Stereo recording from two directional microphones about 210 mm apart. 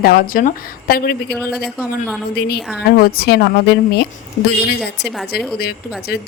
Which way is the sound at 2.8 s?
45° left (ahead or behind).